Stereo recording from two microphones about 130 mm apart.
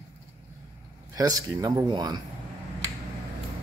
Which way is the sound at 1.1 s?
30° right (ahead or behind).